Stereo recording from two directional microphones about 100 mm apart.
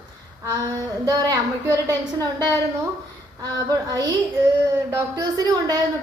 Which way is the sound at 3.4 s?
40° right (ahead or behind).